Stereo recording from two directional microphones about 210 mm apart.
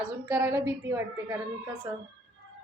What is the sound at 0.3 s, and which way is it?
Speech, 10° right (ahead or behind).